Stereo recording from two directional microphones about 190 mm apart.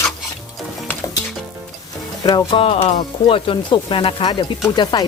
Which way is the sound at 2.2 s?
20° left (ahead or behind).